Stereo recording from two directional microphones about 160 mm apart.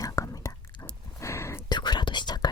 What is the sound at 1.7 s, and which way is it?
Whispering, 30° left (ahead or behind).